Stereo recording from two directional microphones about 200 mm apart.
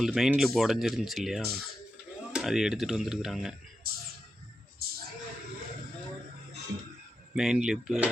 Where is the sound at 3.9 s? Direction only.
50° right (ahead or behind).